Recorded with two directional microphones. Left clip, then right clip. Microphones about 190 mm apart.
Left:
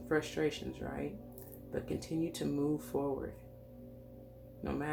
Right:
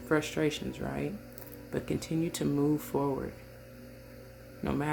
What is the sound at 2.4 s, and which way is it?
Speech, 40° right (ahead or behind).